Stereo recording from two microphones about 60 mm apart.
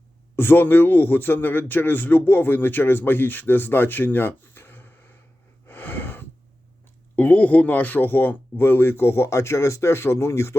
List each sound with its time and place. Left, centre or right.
0.3 s a man's voice: left
5.6 s wheeze: left
7.2 s a man's voice: left